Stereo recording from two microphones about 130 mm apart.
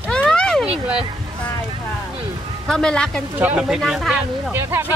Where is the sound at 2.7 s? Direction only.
5° left (ahead or behind).